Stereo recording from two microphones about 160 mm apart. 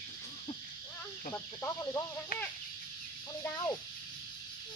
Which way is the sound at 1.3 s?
15° left (ahead or behind).